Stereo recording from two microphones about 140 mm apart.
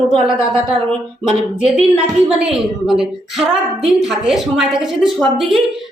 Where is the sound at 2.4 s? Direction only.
5° right (ahead or behind).